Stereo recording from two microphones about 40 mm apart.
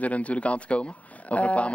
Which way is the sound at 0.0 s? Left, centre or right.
Left.